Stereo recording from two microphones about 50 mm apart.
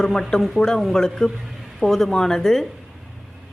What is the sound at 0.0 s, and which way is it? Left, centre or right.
Speech, centre.